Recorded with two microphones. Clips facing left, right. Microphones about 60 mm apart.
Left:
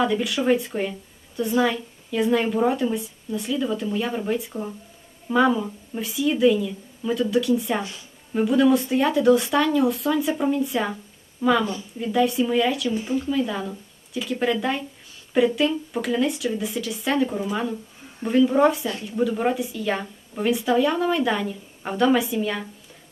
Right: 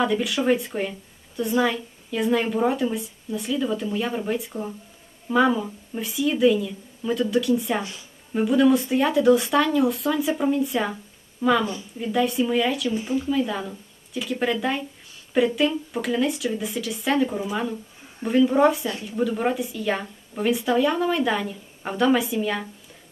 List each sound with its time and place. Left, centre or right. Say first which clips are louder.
0.0 s a woman's voice: even; centre
11.6 s a woman's voice: left 1 dB; centre
11.9 s a woman's voice: left 1 dB; centre